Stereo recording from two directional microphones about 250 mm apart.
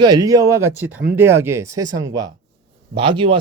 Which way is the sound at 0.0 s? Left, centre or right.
Centre.